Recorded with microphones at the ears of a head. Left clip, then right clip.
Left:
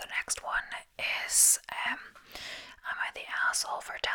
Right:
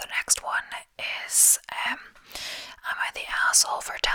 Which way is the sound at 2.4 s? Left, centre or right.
Right.